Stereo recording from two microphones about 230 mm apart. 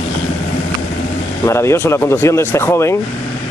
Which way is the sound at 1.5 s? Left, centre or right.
Centre.